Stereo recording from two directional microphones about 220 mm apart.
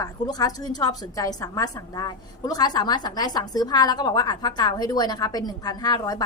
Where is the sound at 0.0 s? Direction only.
15° left (ahead or behind).